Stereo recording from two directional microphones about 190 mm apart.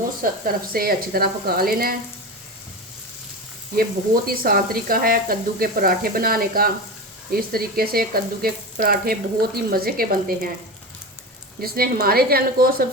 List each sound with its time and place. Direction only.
0.2 s frying: 50° right (ahead or behind)
3.8 s frying: 50° right (ahead or behind)
11.6 s frying: 55° right (ahead or behind)